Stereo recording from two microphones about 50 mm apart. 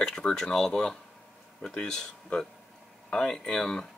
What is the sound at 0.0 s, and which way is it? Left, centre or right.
Speech, centre.